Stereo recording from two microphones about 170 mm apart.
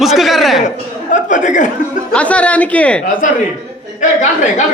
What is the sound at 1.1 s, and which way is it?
Speech, 45° left (ahead or behind).